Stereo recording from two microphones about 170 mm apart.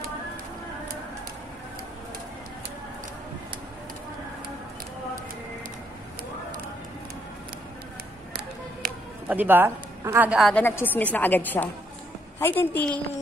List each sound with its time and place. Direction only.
9.3 s a woman's voice: 10° right (ahead or behind)
10.5 s a woman's voice: 10° left (ahead or behind)